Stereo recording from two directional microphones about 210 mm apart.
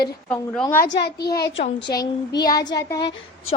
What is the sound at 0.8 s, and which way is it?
Speech, 50° left (ahead or behind).